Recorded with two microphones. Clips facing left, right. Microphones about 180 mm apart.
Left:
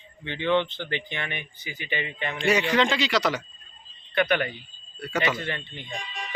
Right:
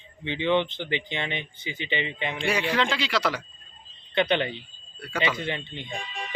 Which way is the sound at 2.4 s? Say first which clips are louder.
Left 4 dB; centre (ahead or behind).